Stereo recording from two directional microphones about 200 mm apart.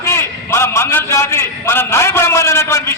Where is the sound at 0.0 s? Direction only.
15° left (ahead or behind).